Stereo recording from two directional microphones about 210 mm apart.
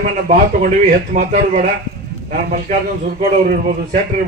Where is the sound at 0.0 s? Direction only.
40° right (ahead or behind).